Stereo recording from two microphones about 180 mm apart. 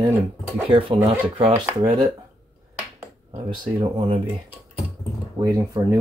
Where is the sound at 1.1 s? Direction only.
15° right (ahead or behind).